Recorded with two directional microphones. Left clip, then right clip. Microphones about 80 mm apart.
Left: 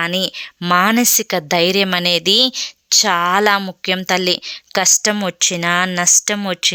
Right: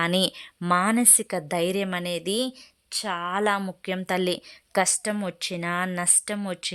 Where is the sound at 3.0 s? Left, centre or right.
Left.